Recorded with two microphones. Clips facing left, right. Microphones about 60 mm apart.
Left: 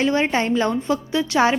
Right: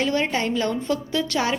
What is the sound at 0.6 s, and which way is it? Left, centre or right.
Speech, centre.